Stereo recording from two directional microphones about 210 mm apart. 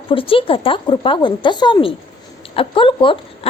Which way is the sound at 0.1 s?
25° left (ahead or behind).